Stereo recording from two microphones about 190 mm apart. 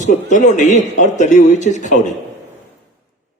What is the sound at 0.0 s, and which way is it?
A man's voice, 40° left (ahead or behind).